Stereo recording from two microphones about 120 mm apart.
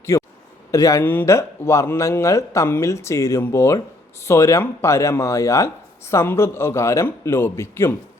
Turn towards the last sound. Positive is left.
turn(degrees=20)  # may be behind; listen again after turning